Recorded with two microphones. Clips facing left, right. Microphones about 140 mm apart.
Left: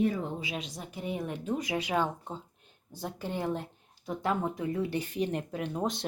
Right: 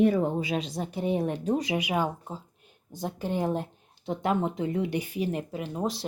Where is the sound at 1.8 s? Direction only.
10° right (ahead or behind).